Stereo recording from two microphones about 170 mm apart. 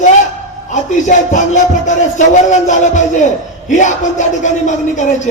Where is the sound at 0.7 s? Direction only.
45° left (ahead or behind).